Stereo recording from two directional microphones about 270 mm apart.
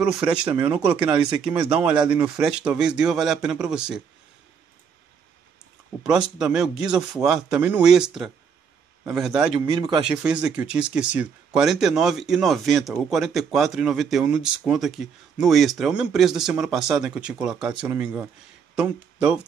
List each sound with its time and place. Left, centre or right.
0.3 s speech: centre
6.0 s speech: centre
9.5 s speech: centre
10.0 s speech: centre